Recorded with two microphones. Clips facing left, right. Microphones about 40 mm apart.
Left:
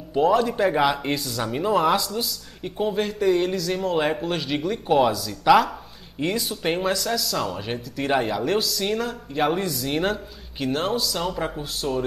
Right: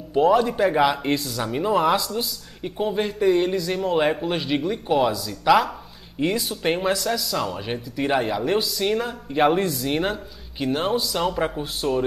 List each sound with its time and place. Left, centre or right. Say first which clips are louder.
0.1 s speech: right 2 dB; centre
9.8 s speech: even; centre
11.0 s speech: right 3 dB; centre